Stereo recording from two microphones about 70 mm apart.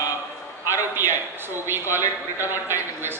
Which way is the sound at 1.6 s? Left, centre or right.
Right.